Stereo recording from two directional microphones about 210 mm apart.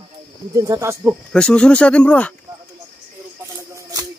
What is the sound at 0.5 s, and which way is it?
Speech, 15° right (ahead or behind).